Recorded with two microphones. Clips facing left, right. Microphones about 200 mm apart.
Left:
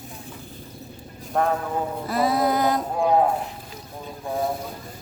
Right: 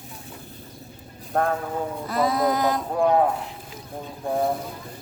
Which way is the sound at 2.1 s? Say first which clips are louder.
Left 1 dB; 5° left (ahead or behind).